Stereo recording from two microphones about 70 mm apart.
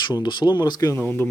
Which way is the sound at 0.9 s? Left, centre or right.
Left.